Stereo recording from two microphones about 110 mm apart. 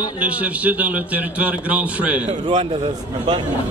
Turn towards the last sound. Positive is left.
turn(degrees=-50)  # may be behind; listen again after turning